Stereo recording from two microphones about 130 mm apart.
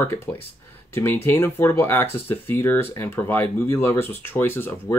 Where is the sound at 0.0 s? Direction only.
15° left (ahead or behind).